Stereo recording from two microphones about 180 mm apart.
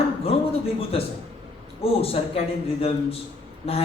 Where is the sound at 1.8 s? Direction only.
35° left (ahead or behind).